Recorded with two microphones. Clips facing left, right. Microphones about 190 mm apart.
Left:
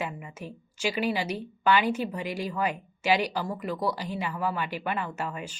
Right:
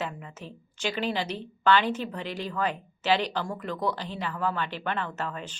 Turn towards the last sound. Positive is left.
turn(degrees=10)  # may be behind; listen again after turning